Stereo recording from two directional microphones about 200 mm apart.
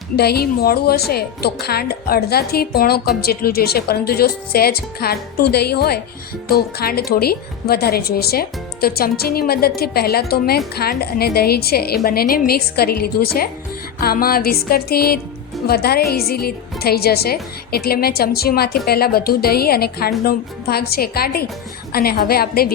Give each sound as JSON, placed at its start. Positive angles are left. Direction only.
{"t": 0.2, "sound": "a woman's voice", "side_deg": 50}